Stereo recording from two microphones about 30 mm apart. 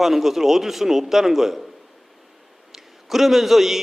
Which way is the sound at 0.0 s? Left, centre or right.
Centre.